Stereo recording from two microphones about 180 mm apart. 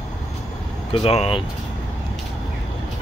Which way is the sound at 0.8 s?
30° left (ahead or behind).